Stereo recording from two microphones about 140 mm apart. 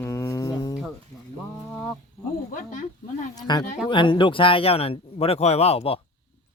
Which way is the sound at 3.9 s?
35° left (ahead or behind).